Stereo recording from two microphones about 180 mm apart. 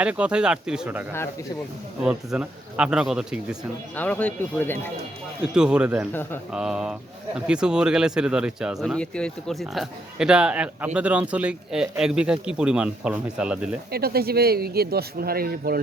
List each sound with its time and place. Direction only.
0.0 s speech: 5° right (ahead or behind)
3.9 s speech: 10° left (ahead or behind)
5.4 s speech: 5° right (ahead or behind)
13.9 s speech: 60° right (ahead or behind)